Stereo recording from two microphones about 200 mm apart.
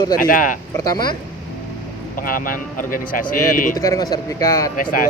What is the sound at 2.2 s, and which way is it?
Speech, 45° left (ahead or behind).